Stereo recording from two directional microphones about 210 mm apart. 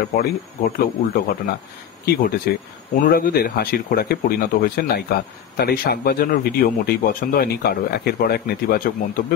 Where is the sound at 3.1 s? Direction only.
45° left (ahead or behind).